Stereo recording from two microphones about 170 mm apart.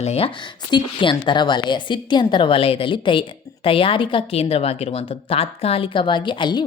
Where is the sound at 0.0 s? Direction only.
35° left (ahead or behind).